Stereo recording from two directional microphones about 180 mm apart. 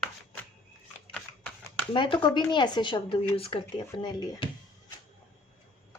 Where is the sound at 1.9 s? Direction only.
25° left (ahead or behind).